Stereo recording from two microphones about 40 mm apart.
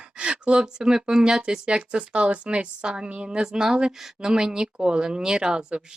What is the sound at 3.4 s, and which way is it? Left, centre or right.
Speech, centre.